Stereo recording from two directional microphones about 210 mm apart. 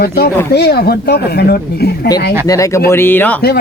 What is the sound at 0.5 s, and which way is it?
Speech, 50° left (ahead or behind).